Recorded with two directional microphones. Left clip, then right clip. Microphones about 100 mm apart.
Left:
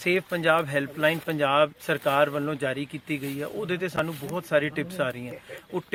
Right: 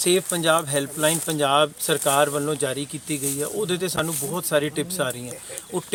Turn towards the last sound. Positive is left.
turn(degrees=-10)  # may be behind; listen again after turning